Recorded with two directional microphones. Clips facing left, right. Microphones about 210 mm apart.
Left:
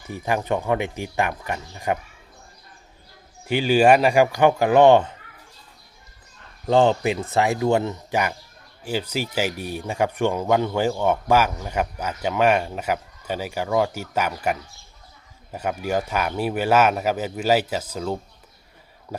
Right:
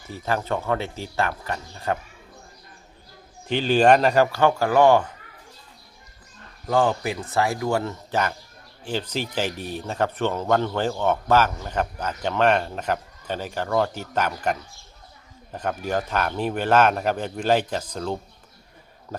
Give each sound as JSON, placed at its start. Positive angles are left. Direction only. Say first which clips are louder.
{"t": 0.1, "sound": "speech", "louder": "left 2 dB", "side_deg": 15}
{"t": 3.4, "sound": "speech", "louder": "left 1 dB", "side_deg": 10}
{"t": 6.7, "sound": "speech", "louder": "left 4 dB", "side_deg": 25}